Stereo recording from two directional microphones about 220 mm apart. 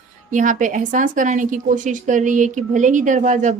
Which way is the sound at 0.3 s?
35° right (ahead or behind).